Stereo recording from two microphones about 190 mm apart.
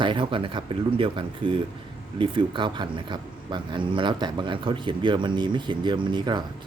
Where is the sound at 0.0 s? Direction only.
25° right (ahead or behind).